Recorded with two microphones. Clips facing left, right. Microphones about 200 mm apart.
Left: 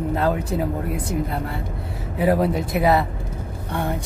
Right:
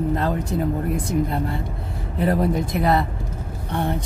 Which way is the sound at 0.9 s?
5° left (ahead or behind).